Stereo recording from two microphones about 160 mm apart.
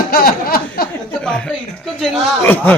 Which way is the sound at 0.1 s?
70° left (ahead or behind).